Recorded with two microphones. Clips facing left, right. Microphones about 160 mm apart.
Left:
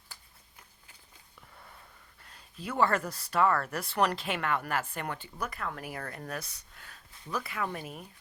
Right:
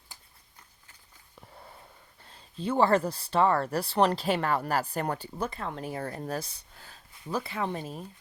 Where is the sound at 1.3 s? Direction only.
30° right (ahead or behind).